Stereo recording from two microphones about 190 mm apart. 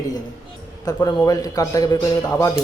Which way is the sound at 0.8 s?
20° left (ahead or behind).